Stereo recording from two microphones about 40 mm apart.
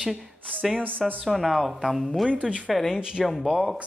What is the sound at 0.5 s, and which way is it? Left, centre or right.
Speech, right.